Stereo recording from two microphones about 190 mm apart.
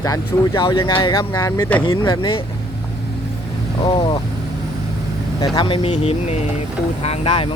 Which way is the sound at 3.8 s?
25° left (ahead or behind).